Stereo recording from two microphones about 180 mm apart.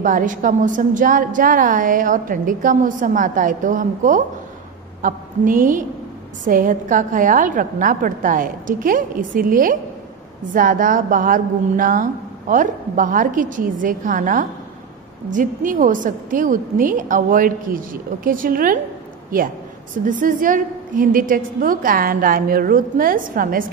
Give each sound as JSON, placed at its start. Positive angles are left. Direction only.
{"t": 0.0, "sound": "a woman's voice", "side_deg": -45}
{"t": 20.1, "sound": "a woman's voice", "side_deg": -50}